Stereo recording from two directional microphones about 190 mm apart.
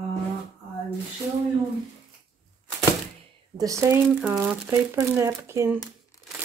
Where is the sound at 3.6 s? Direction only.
15° right (ahead or behind).